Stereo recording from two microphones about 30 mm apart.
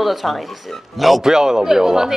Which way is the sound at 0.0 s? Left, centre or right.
Centre.